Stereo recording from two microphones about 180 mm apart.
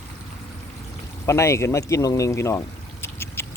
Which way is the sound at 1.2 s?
15° left (ahead or behind).